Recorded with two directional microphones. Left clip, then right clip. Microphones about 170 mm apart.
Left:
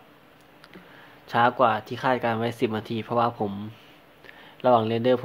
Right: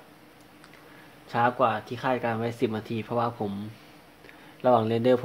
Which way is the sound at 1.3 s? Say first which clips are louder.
Left 3 dB; 20° left (ahead or behind).